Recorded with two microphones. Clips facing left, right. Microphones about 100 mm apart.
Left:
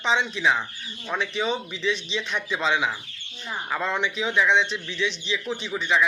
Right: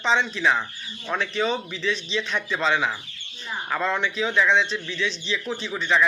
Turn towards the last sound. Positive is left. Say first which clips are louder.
# right 1 dB
turn(degrees=10)  # may be behind; listen again after turning